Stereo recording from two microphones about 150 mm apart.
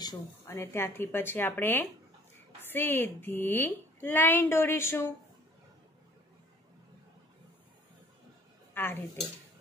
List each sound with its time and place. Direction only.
0.0 s a woman's voice: 20° left (ahead or behind)
8.7 s a woman's voice: 15° left (ahead or behind)